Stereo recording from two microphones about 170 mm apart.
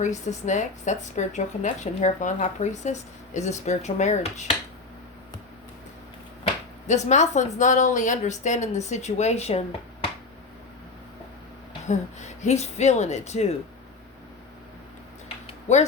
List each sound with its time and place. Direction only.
0.0 s speech: 45° left (ahead or behind)
6.8 s speech: 45° left (ahead or behind)
11.9 s speech: 45° left (ahead or behind)